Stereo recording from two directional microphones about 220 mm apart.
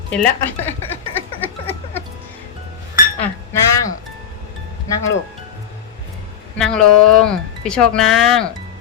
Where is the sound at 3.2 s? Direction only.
15° left (ahead or behind).